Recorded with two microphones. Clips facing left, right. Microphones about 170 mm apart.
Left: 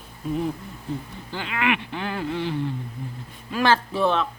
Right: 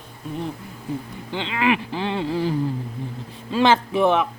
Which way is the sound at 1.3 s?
25° right (ahead or behind).